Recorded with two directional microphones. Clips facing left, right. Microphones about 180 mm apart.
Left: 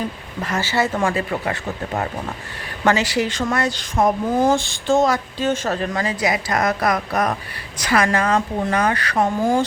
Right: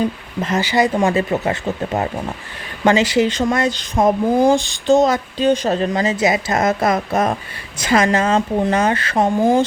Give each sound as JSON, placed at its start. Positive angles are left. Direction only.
{"t": 0.4, "sound": "speech", "side_deg": -20}
{"t": 2.8, "sound": "speech", "side_deg": -20}